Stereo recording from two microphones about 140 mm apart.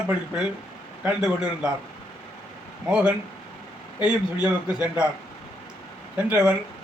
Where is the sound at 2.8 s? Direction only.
10° right (ahead or behind).